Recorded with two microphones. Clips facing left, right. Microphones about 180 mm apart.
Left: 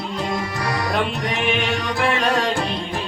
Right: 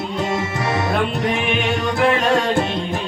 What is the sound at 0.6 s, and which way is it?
Music, 20° right (ahead or behind).